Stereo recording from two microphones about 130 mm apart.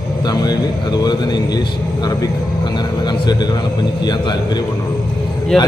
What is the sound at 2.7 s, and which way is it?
A man's voice, 35° left (ahead or behind).